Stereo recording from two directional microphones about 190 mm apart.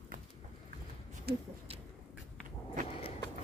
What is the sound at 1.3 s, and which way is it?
Speech, 55° right (ahead or behind).